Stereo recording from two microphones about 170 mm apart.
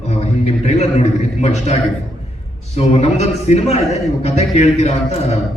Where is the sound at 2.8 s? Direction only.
40° left (ahead or behind).